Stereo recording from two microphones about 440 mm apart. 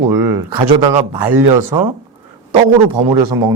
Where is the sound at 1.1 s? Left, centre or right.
Right.